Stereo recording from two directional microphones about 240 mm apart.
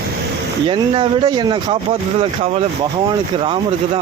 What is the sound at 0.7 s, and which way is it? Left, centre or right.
Speech, right.